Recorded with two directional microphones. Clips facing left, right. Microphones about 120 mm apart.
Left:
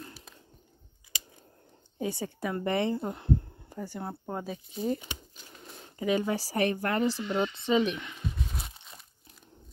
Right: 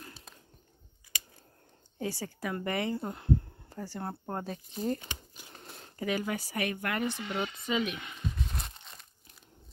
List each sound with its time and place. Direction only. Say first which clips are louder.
2.0 s speech: left 3 dB; 20° left (ahead or behind)
8.4 s crumpling: left 1 dB; 5° left (ahead or behind)